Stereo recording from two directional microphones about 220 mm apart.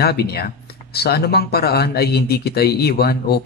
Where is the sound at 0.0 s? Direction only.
45° left (ahead or behind).